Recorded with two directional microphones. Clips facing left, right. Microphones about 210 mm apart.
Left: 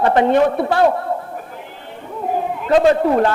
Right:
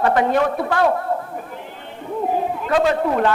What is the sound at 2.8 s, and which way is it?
Speech, 35° left (ahead or behind).